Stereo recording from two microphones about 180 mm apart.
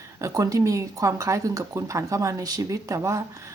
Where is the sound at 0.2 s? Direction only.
20° right (ahead or behind).